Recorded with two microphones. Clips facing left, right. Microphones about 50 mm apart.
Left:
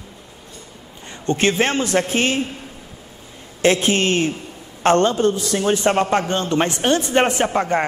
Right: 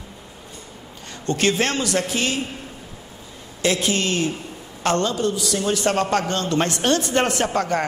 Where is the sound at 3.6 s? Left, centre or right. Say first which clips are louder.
Left 5 dB; left.